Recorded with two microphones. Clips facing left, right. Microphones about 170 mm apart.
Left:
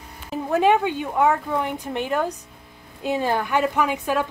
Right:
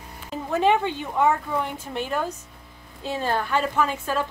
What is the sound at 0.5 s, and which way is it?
A woman's voice, 15° left (ahead or behind).